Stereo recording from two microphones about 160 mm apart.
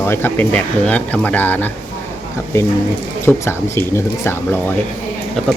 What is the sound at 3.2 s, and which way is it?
Speech, 15° left (ahead or behind).